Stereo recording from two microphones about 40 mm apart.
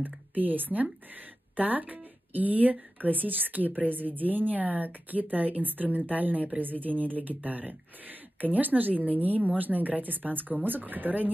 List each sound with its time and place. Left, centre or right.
0.0 s speech: right